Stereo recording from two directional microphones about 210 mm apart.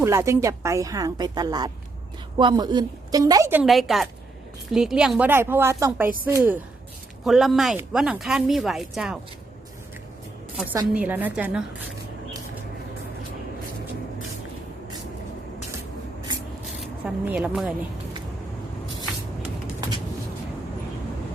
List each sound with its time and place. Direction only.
0.0 s a woman's voice: 15° right (ahead or behind)
10.8 s a woman's voice: 10° right (ahead or behind)
16.8 s speech: 5° right (ahead or behind)